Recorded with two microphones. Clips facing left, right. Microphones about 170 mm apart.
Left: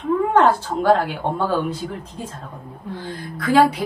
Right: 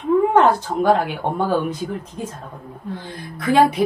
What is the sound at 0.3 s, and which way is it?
Speech, 20° right (ahead or behind).